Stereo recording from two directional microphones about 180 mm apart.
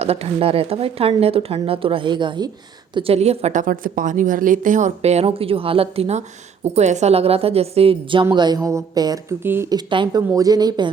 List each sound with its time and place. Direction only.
0.0 s a woman's voice: 35° right (ahead or behind)